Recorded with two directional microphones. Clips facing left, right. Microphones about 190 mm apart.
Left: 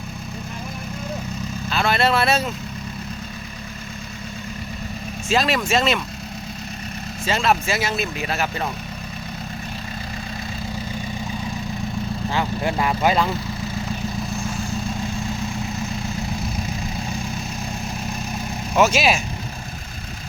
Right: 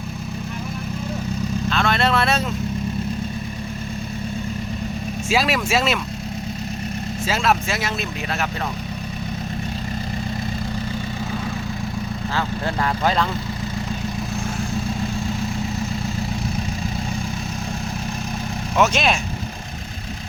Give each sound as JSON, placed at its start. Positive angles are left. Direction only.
{"t": 1.7, "sound": "speech", "side_deg": 5}
{"t": 5.3, "sound": "speech", "side_deg": -5}
{"t": 7.3, "sound": "speech", "side_deg": 0}
{"t": 12.3, "sound": "speech", "side_deg": 15}
{"t": 18.8, "sound": "speech", "side_deg": 5}